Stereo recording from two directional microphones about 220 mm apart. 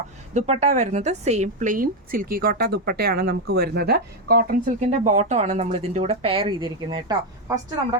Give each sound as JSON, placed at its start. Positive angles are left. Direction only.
{"t": 0.3, "sound": "a woman's voice", "side_deg": -30}